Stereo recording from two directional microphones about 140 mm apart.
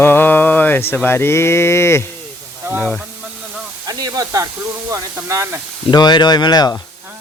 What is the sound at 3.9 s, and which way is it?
Hiss, 25° right (ahead or behind).